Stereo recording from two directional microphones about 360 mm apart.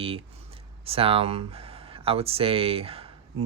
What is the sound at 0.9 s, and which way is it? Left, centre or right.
Speech, centre.